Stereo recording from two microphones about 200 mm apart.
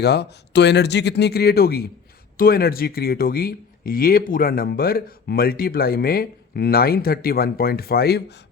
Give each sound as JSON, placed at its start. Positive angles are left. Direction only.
{"t": 0.0, "sound": "speech", "side_deg": 55}